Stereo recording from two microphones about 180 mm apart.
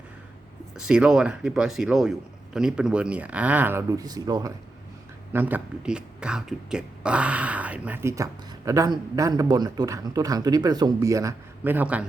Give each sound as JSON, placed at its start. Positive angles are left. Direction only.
{"t": 0.8, "sound": "a man's voice", "side_deg": -5}
{"t": 5.3, "sound": "speech", "side_deg": -10}